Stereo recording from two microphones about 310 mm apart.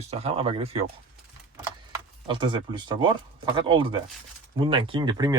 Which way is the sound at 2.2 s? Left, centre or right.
Centre.